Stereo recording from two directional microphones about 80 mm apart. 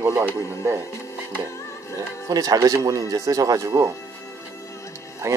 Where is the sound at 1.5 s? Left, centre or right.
Left.